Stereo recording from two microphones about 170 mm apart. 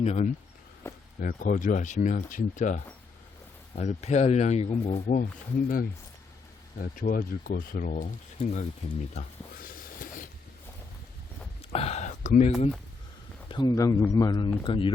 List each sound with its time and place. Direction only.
0.0 s speech: 40° left (ahead or behind)
0.8 s a sound: 15° left (ahead or behind)
1.2 s speech: 55° left (ahead or behind)
9.6 s train: 55° left (ahead or behind)
11.7 s speech: 35° left (ahead or behind)
13.5 s speech: 25° left (ahead or behind)